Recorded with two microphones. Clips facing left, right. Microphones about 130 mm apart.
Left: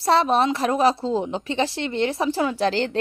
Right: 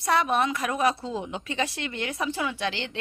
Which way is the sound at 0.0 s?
30° left (ahead or behind).